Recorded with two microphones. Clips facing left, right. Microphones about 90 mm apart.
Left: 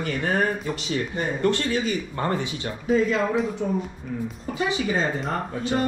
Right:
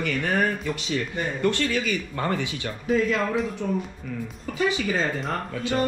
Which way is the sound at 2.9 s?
5° left (ahead or behind).